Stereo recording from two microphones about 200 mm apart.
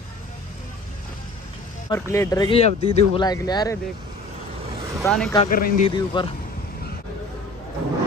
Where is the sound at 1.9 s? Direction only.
15° left (ahead or behind).